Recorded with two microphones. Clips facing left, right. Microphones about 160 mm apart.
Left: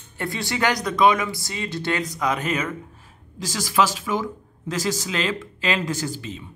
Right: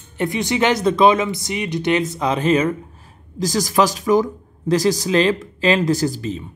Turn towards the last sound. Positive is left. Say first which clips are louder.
# right 8 dB
turn(degrees=-40)  # may be behind; listen again after turning